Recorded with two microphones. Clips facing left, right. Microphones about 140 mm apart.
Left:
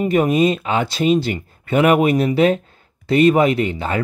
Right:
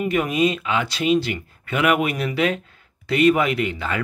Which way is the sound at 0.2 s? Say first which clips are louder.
Left 5 dB; 40° left (ahead or behind).